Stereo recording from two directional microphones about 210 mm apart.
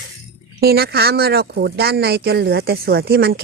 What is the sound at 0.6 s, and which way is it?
Speech, 50° right (ahead or behind).